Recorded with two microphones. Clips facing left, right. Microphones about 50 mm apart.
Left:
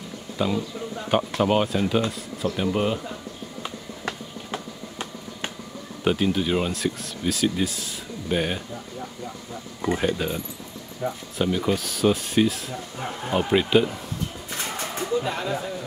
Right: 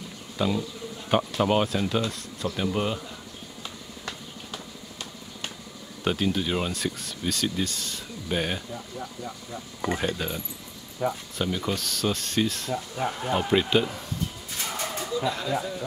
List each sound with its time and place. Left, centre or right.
0.4 s speech: centre
3.6 s a sound: left
6.0 s speech: centre
9.9 s speech: centre
11.0 s speech: centre
11.3 s speech: centre
15.0 s speech: left